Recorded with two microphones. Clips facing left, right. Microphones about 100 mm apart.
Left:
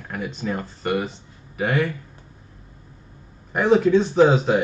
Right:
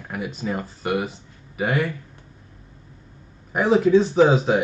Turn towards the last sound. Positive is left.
turn(degrees=-5)  # may be behind; listen again after turning